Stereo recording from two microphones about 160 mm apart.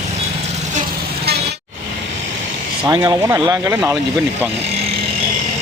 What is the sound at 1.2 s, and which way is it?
Vehicle, 85° right.